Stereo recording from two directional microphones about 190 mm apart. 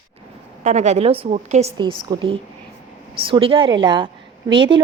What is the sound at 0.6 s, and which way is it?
A woman's voice, 40° right (ahead or behind).